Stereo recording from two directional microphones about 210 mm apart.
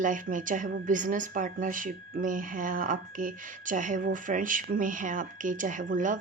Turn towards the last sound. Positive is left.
turn(degrees=-35)  # may be behind; listen again after turning